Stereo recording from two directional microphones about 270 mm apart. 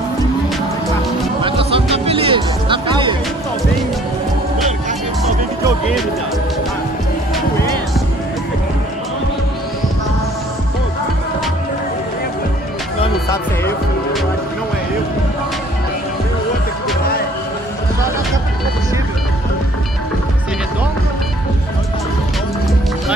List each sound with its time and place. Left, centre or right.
1.4 s music: right